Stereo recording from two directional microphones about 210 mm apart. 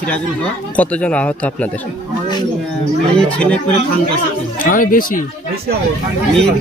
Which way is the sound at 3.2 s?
5° left (ahead or behind).